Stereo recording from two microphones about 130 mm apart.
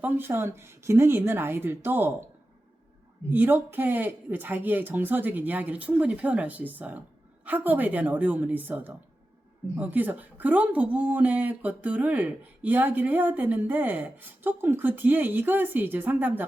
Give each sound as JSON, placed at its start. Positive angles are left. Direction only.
{"t": 0.0, "sound": "speech", "side_deg": -15}
{"t": 3.2, "sound": "speech", "side_deg": -15}